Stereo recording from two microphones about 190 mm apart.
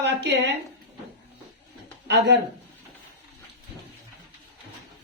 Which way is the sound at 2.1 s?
60° right (ahead or behind).